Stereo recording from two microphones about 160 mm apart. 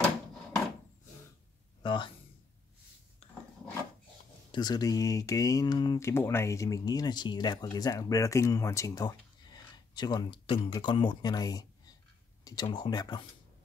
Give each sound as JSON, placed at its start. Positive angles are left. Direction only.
{"t": 1.8, "sound": "speech", "side_deg": 30}
{"t": 4.5, "sound": "speech", "side_deg": 25}